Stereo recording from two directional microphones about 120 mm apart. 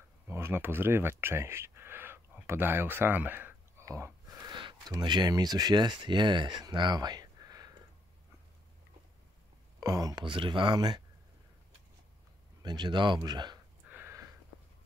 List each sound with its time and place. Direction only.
0.3 s speech: 20° right (ahead or behind)
3.8 s a sound: 25° right (ahead or behind)
4.9 s speech: 35° right (ahead or behind)
9.8 s speech: 30° right (ahead or behind)
10.2 s speech: 45° right (ahead or behind)
12.6 s speech: 40° right (ahead or behind)
13.8 s a sound: 15° right (ahead or behind)